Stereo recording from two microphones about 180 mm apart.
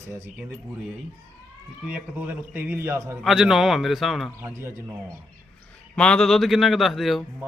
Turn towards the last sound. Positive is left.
turn(degrees=0)  # may be behind; listen again after turning